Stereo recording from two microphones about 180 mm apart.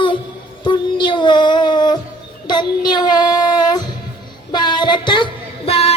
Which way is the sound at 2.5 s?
25° left (ahead or behind).